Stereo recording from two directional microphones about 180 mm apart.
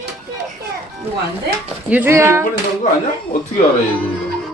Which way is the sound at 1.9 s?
10° right (ahead or behind).